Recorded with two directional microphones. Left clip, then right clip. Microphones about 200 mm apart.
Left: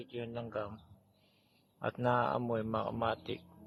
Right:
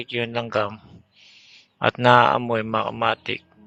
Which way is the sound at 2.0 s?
30° right (ahead or behind).